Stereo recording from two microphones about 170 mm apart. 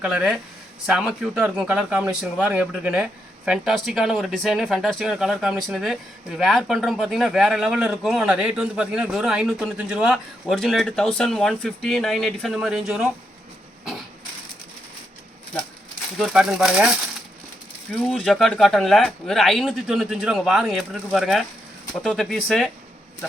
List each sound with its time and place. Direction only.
0.0 s a man's voice: 5° right (ahead or behind)
16.1 s a man's voice: 5° right (ahead or behind)
18.0 s a man's voice: centre (ahead or behind)